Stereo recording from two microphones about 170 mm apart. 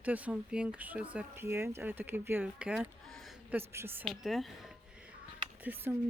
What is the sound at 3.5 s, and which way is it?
Speech, 15° right (ahead or behind).